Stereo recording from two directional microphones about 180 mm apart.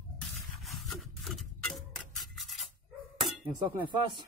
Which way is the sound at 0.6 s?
Centre (ahead or behind).